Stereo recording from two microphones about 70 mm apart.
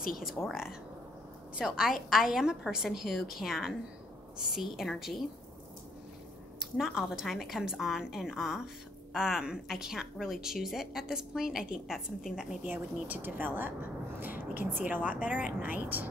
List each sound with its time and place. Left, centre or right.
0.2 s a woman's voice: centre
4.7 s a woman's voice: centre
6.8 s a woman's voice: centre
12.9 s a woman's voice: right